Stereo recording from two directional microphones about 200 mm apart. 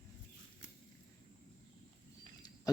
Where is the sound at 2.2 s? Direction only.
20° left (ahead or behind).